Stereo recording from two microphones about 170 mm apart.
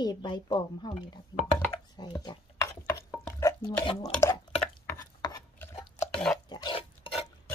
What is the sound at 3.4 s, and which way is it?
Speech, 25° left (ahead or behind).